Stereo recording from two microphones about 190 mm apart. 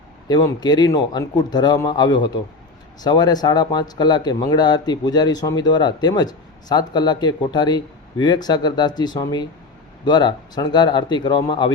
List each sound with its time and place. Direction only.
0.3 s speech: 20° left (ahead or behind)